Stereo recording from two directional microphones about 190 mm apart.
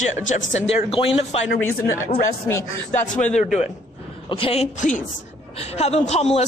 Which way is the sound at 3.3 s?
35° left (ahead or behind).